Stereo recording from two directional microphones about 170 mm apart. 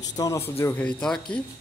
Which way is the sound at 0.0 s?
20° left (ahead or behind).